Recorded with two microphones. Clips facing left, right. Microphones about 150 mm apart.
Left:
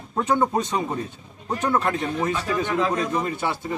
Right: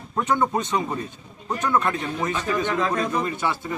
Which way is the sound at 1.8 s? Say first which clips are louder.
Left 1 dB; 30° left (ahead or behind).